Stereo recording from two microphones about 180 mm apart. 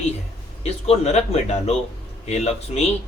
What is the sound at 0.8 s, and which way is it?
A man's voice, 35° left (ahead or behind).